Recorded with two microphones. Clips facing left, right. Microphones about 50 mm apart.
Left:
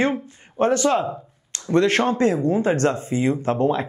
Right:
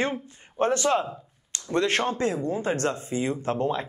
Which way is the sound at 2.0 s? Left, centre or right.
Left.